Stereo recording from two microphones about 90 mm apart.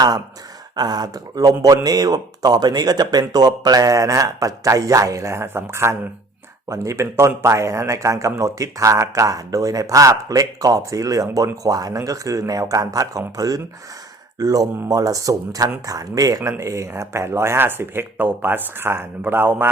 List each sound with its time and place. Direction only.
0.8 s speech: 50° right (ahead or behind); by 19.6 s 25° right (ahead or behind)